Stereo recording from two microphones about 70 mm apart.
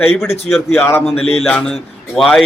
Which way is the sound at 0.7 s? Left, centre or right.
Left.